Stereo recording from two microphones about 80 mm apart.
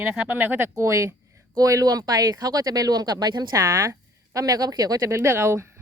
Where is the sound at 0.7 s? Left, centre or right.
Right.